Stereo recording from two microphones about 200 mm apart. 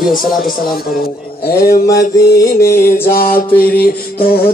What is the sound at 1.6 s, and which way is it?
Music, 45° left (ahead or behind).